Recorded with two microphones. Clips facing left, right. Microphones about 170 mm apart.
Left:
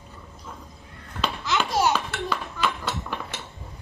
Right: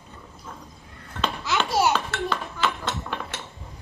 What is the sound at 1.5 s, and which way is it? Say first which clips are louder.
Laughter: right 1 dB; 10° right (ahead or behind).